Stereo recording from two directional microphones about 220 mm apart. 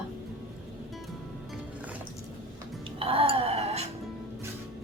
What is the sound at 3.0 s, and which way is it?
Music, 25° right (ahead or behind).